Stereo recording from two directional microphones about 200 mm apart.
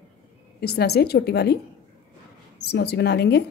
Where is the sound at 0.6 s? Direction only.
50° left (ahead or behind).